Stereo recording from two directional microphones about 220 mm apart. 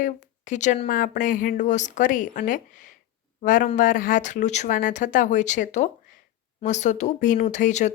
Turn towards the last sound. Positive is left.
turn(degrees=35)  # may be behind; listen again after turning